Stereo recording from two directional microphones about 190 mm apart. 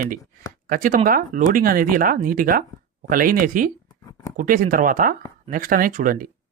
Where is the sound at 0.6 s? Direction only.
45° right (ahead or behind).